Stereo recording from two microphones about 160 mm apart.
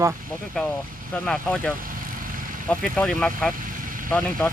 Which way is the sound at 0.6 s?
5° left (ahead or behind).